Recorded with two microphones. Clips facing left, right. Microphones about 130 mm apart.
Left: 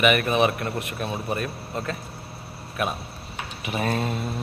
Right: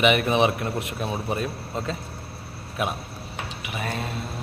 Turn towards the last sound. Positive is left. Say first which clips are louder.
# left 5 dB
turn(degrees=35)  # may be behind; listen again after turning